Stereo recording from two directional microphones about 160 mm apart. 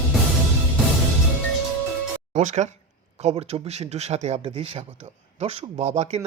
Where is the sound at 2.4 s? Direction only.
45° right (ahead or behind).